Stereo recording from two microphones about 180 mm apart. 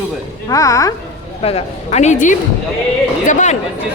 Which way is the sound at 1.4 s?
35° left (ahead or behind).